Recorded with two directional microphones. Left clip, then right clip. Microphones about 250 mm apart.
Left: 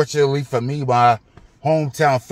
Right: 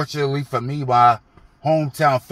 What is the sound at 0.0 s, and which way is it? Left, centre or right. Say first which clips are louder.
Speech: left 6 dB; centre.